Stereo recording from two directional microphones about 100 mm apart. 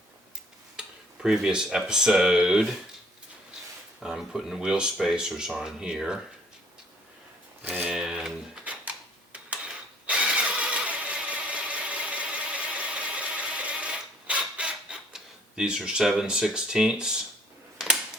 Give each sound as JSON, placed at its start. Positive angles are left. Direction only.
{"t": 0.8, "sound": "speech", "side_deg": -5}
{"t": 4.0, "sound": "speech", "side_deg": -5}
{"t": 7.6, "sound": "a sound", "side_deg": -15}
{"t": 9.3, "sound": "engine starting", "side_deg": -10}